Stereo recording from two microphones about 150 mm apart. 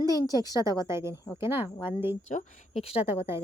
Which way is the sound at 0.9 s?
15° right (ahead or behind).